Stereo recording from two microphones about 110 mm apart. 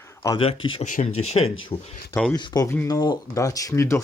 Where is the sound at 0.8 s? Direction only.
85° left.